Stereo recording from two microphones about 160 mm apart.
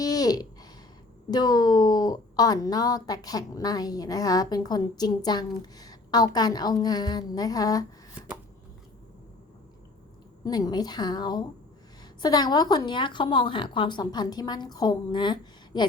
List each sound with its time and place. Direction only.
0.0 s a sound: 25° left (ahead or behind)
1.3 s a woman's voice: 25° left (ahead or behind)
10.4 s a woman's voice: 25° left (ahead or behind)